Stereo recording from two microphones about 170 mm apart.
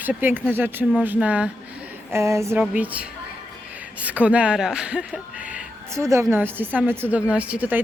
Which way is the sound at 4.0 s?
10° right (ahead or behind).